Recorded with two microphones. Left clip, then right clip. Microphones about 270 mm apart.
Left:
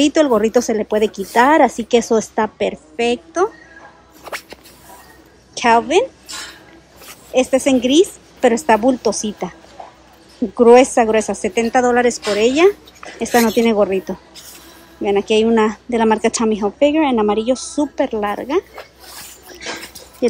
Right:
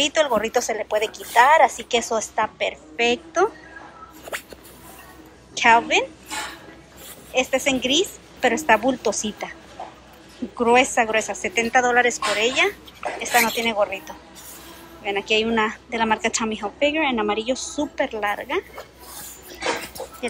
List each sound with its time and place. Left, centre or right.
0.0 s a woman's voice: left
5.5 s a woman's voice: centre
7.3 s a woman's voice: centre
15.0 s speech: centre
19.5 s a sound: centre